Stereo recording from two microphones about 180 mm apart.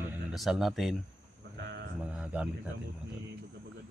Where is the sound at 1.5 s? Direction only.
70° right (ahead or behind).